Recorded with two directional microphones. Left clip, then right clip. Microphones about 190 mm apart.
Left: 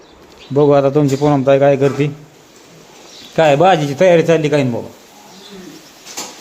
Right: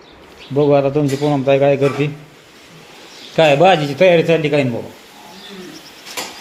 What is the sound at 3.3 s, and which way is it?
A man's voice, 10° left (ahead or behind).